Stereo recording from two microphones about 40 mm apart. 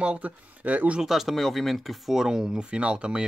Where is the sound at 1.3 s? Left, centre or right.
Centre.